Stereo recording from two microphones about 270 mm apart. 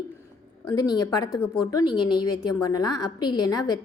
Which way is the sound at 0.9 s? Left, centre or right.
Centre.